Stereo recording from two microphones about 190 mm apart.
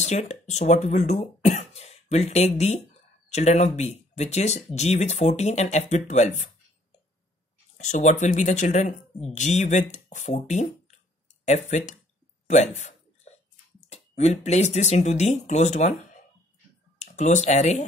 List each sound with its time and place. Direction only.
0.0 s speech: 35° left (ahead or behind)
7.7 s speech: 40° left (ahead or behind)
12.4 s a sound: 40° left (ahead or behind)
13.8 s speech: 35° left (ahead or behind)
17.0 s speech: 40° left (ahead or behind)